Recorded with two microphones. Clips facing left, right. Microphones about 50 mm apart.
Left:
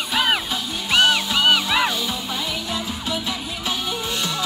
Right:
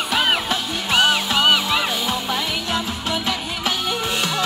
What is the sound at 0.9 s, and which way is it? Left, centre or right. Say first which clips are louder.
Music: even; centre.